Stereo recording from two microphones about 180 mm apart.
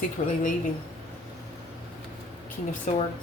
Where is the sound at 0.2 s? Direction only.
45° left (ahead or behind).